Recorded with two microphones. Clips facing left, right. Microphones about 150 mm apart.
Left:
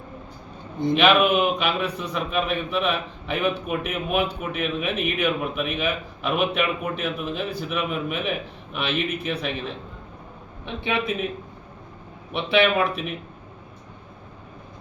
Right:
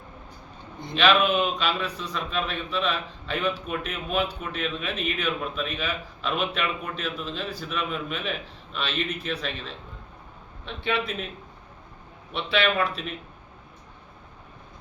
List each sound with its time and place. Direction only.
0.9 s a man's voice: 15° left (ahead or behind)
12.5 s a man's voice: 20° left (ahead or behind)